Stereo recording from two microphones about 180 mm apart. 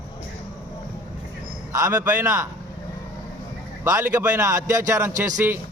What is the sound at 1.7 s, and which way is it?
Speech, 15° right (ahead or behind).